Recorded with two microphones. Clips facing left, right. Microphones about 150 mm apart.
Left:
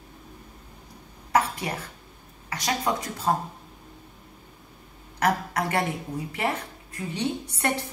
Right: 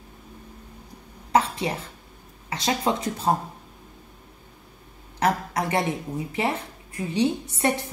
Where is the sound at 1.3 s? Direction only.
25° right (ahead or behind).